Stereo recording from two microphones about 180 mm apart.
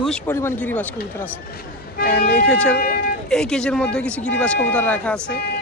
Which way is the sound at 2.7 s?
60° left (ahead or behind).